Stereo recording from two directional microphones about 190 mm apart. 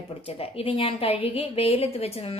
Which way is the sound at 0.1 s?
30° left (ahead or behind).